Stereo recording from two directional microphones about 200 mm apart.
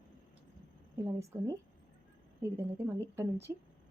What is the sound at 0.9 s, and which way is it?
Speech, 15° right (ahead or behind).